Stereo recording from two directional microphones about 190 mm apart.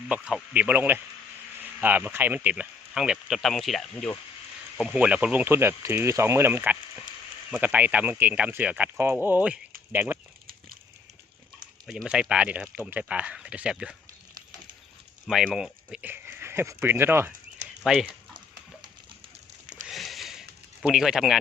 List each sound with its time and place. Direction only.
0.1 s speech: 5° right (ahead or behind)
3.9 s speech: 15° left (ahead or behind)
4.8 s speech: 5° right (ahead or behind)
11.9 s speech: 5° right (ahead or behind)
15.3 s speech: centre (ahead or behind)
19.6 s a sound: 40° right (ahead or behind)
19.9 s a sound: centre (ahead or behind)